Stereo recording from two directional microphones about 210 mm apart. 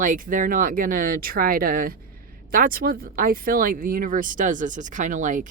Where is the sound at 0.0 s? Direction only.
40° right (ahead or behind).